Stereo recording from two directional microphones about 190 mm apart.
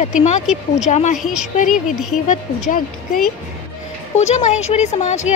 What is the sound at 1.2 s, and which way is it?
Speech, centre (ahead or behind).